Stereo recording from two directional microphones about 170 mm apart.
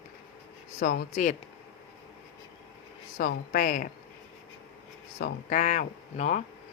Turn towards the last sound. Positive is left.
turn(degrees=45)  # may be behind; listen again after turning